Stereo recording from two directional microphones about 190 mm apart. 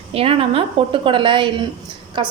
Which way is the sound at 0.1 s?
30° right (ahead or behind).